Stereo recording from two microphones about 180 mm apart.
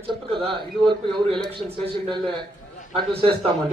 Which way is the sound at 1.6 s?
35° right (ahead or behind).